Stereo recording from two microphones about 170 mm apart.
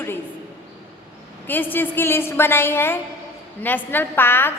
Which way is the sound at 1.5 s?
10° left (ahead or behind).